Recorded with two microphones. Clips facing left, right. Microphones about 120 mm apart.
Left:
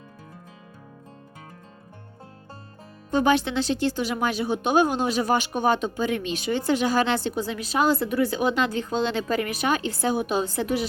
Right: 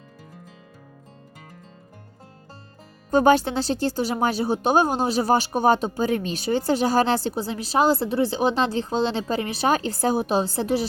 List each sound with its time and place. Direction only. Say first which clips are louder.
3.1 s speech: right 4 dB; 40° right (ahead or behind)